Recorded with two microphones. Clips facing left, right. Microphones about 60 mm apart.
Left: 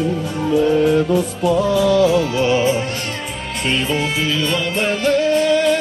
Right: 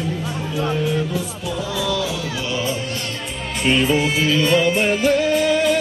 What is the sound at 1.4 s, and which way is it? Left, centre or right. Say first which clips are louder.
Music: left 11 dB; left.